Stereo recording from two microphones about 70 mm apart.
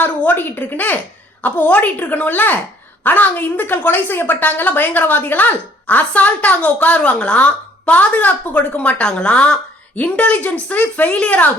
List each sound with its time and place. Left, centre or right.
0.0 s a woman's voice: left